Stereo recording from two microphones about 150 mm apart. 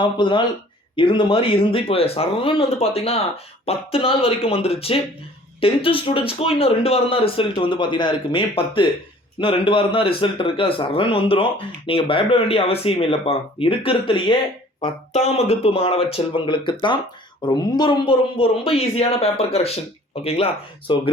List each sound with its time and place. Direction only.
0.0 s speech: 30° left (ahead or behind)